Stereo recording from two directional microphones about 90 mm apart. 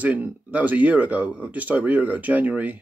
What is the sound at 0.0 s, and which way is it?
Speech, 15° right (ahead or behind).